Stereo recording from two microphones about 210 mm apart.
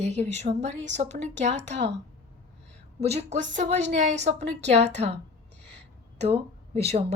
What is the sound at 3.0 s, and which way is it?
A woman's voice, 30° right (ahead or behind).